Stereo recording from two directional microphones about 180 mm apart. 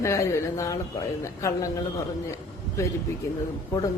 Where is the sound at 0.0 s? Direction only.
15° left (ahead or behind).